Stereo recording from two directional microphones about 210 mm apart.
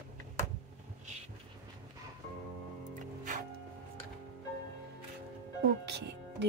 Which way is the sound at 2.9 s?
40° right (ahead or behind).